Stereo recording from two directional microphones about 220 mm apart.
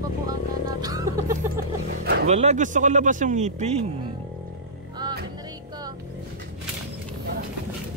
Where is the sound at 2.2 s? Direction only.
30° right (ahead or behind).